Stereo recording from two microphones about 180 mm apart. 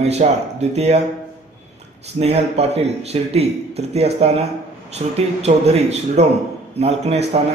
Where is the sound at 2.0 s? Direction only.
35° right (ahead or behind).